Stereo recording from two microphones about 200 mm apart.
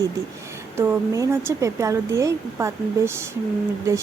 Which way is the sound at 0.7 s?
10° right (ahead or behind).